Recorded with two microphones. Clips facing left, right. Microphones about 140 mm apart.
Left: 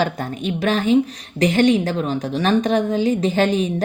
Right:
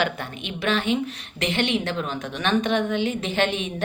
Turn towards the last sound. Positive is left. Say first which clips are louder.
# left 6 dB
turn(degrees=35)  # may be behind; listen again after turning